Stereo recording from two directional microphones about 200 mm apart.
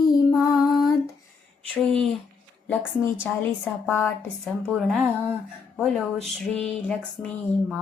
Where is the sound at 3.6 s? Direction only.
10° left (ahead or behind).